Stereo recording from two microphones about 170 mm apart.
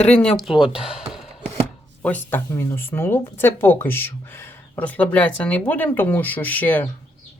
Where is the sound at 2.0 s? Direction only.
10° left (ahead or behind).